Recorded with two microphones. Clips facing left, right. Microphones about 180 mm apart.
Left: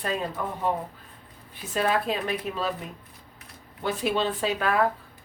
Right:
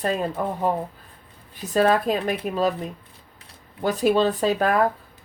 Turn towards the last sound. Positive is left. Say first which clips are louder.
# right 5 dB
turn(degrees=-40)  # may be behind; listen again after turning